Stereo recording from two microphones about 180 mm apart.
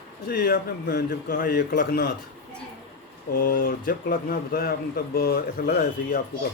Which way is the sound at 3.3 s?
50° left (ahead or behind).